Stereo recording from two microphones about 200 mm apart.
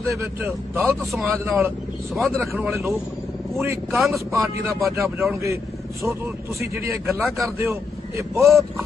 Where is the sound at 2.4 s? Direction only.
15° right (ahead or behind).